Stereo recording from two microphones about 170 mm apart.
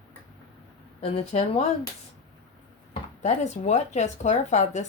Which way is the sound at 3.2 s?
40° left (ahead or behind).